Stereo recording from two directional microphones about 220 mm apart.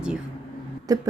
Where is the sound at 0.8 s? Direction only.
15° right (ahead or behind).